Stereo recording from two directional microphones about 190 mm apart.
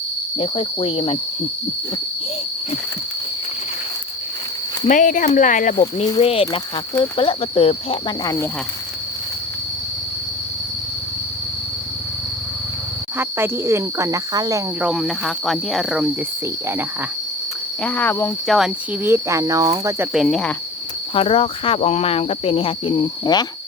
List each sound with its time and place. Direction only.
0.3 s speech: 30° left (ahead or behind)
4.9 s speech: 45° left (ahead or behind)
6.1 s speech: 30° left (ahead or behind)
13.1 s cricket: 10° right (ahead or behind)
14.8 s speech: 5° right (ahead or behind)
17.8 s speech: 10° left (ahead or behind)
19.0 s cricket: 15° right (ahead or behind)
20.1 s speech: centre (ahead or behind)
21.2 s speech: 30° left (ahead or behind)